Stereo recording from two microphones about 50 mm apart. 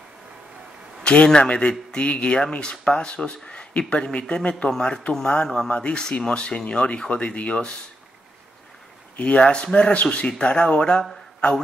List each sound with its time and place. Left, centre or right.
1.0 s speech: left
9.1 s speech: left